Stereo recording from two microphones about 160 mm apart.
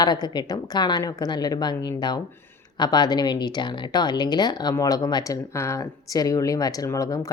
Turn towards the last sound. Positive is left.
turn(degrees=20)  # may be behind; listen again after turning